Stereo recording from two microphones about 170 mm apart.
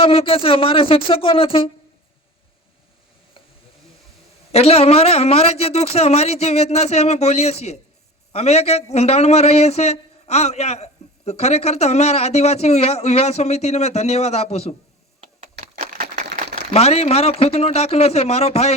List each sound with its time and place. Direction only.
0.0 s speech: 35° left (ahead or behind)
4.5 s speech: 35° left (ahead or behind)
15.6 s a sound: 50° right (ahead or behind)
16.7 s speech: 35° left (ahead or behind)